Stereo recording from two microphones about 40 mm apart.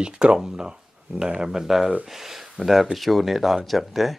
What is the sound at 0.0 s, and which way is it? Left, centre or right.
Speech, right.